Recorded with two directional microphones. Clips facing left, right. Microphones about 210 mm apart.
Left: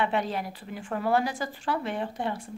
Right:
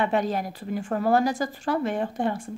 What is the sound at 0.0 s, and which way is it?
Speech, 45° right (ahead or behind).